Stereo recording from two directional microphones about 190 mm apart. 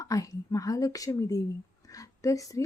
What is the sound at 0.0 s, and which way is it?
Speech, 20° left (ahead or behind).